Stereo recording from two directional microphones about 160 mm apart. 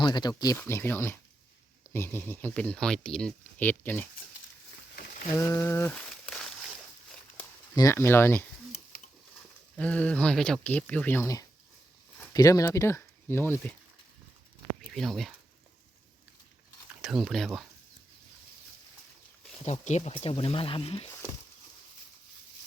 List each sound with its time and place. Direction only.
0.0 s speech: 25° left (ahead or behind)
0.6 s speech: 15° left (ahead or behind)
5.4 s a sound: 20° left (ahead or behind)
7.8 s speech: 15° left (ahead or behind)
9.7 s speech: 10° left (ahead or behind)
14.9 s speech: centre (ahead or behind)
17.0 s speech: centre (ahead or behind)
19.6 s speech: 45° left (ahead or behind)